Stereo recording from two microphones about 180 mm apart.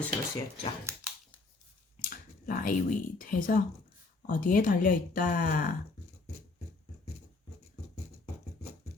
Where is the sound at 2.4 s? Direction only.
45° left (ahead or behind).